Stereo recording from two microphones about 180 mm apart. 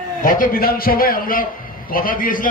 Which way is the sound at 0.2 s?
50° left (ahead or behind).